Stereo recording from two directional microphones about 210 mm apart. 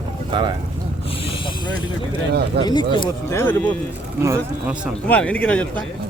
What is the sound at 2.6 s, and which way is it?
Speech, 20° left (ahead or behind).